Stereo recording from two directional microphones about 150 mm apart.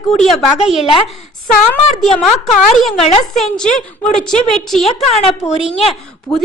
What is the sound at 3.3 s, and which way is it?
A woman's voice, centre (ahead or behind).